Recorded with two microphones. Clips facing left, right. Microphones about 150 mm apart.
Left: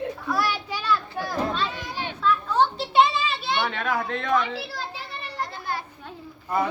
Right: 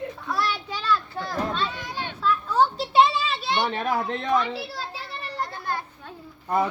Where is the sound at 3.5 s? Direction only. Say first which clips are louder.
Right 2 dB; 35° right (ahead or behind).